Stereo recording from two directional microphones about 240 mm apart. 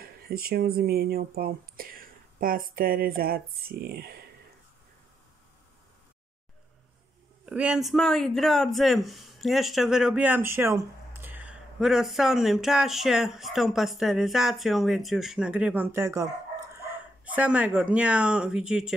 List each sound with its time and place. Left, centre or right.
0.0 s speech: right
7.4 s a man's voice: centre